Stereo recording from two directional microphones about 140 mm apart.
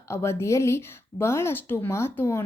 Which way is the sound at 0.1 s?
20° left (ahead or behind).